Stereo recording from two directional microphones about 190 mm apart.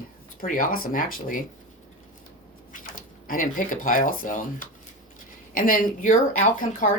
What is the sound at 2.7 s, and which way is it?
Speech, 45° left (ahead or behind).